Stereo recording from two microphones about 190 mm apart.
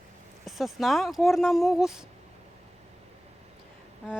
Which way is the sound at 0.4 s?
Centre (ahead or behind).